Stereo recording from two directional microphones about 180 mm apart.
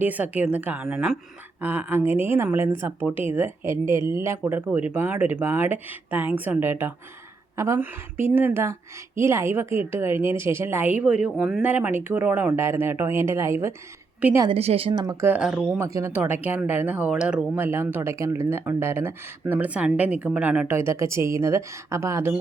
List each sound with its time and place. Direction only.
0.0 s a woman's voice: 10° right (ahead or behind)
14.4 s speech: 35° right (ahead or behind); by 15.4 s 15° right (ahead or behind)
15.4 s speech: 5° right (ahead or behind)
15.8 s speech: 15° right (ahead or behind)